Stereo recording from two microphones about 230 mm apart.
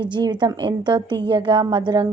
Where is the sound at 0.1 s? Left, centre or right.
Centre.